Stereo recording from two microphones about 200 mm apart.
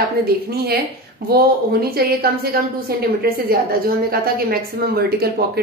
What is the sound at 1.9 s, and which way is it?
A woman's voice, 50° right (ahead or behind).